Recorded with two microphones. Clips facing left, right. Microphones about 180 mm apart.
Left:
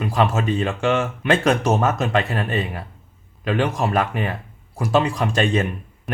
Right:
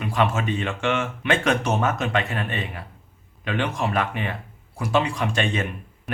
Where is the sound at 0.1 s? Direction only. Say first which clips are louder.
Left 2 dB; 35° left (ahead or behind).